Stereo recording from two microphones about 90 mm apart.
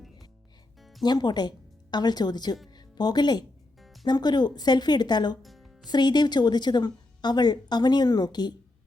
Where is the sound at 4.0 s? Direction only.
50° left (ahead or behind).